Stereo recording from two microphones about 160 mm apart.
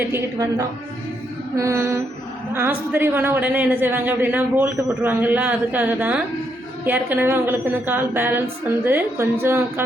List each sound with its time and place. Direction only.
0.0 s a man's voice: 15° right (ahead or behind)